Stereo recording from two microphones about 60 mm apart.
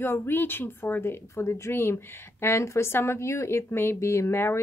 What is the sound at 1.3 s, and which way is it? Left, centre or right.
A woman's voice, left.